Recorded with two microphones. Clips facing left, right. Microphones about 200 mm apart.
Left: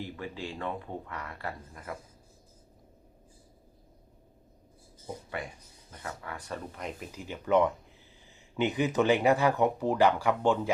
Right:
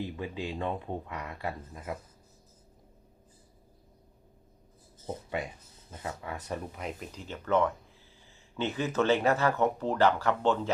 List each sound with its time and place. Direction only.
0.2 s speech: 20° right (ahead or behind)
5.9 s speech: 20° right (ahead or behind)
6.7 s speech: centre (ahead or behind)